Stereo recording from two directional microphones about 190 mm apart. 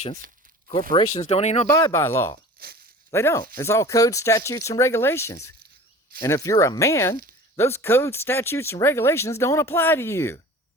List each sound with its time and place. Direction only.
0.9 s speech: 35° left (ahead or behind)
1.7 s speech: 15° left (ahead or behind)
2.6 s speech: 55° right (ahead or behind)
3.1 s speech: 15° left (ahead or behind)